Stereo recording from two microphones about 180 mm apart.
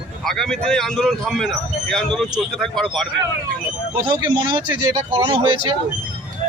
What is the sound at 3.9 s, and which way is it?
A man's voice, 25° right (ahead or behind).